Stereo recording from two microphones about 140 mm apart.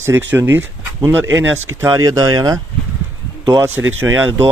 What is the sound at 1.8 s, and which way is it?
Speech, 25° right (ahead or behind).